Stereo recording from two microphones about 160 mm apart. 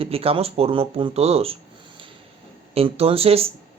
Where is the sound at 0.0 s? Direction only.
35° right (ahead or behind).